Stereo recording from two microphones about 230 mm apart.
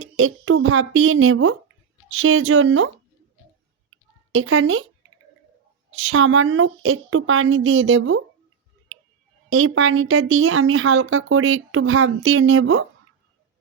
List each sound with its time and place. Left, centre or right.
0.0 s a woman's voice: right
3.8 s a sound: right
5.9 s a woman's voice: right
9.5 s a woman's voice: right